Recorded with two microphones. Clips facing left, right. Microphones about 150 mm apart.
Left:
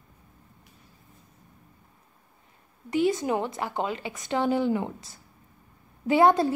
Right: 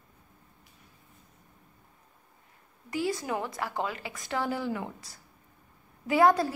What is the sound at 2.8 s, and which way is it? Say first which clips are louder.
A woman's voice: left 7 dB; 20° left (ahead or behind).